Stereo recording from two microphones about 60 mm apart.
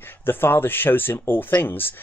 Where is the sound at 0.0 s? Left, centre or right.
Left.